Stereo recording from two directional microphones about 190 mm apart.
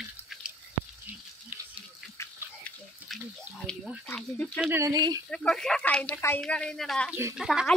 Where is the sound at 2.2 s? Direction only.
15° left (ahead or behind).